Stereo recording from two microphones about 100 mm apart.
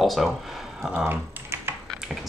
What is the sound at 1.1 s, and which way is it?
Typing, 20° right (ahead or behind).